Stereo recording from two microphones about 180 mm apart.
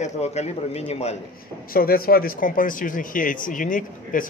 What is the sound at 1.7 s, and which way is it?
Speech, 55° left (ahead or behind).